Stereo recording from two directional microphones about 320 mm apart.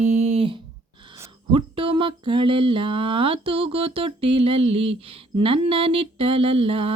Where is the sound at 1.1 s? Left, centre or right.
Centre.